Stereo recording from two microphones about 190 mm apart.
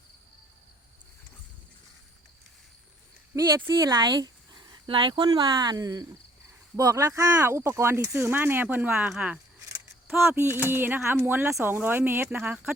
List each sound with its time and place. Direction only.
3.3 s speech: 15° right (ahead or behind)